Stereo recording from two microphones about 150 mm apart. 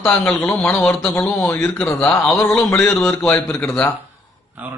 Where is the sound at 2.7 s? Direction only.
15° left (ahead or behind).